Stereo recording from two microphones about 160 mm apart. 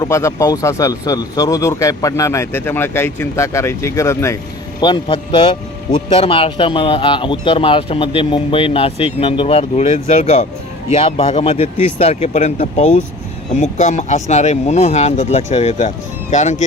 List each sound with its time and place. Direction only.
0.0 s speech: 20° left (ahead or behind)
4.8 s speech: 30° left (ahead or behind); by 16.6 s 45° left (ahead or behind)